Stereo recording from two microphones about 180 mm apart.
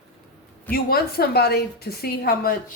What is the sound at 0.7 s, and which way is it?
A woman's voice, 55° left (ahead or behind).